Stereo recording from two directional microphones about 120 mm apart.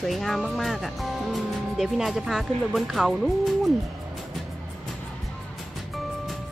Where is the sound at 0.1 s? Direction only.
Centre (ahead or behind).